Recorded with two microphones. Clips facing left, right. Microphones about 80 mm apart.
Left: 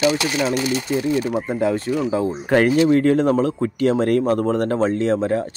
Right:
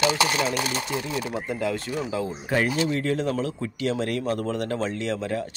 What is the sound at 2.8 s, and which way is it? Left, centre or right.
Speech, left.